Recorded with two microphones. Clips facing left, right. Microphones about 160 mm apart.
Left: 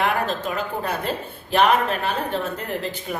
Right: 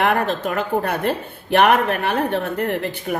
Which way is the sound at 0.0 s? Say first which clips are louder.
Right 4 dB; 65° right (ahead or behind).